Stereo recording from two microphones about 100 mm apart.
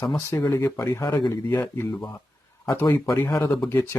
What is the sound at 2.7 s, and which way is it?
Speech, 35° left (ahead or behind).